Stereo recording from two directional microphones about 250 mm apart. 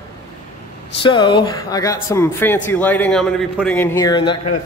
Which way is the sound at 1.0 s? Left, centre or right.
Centre.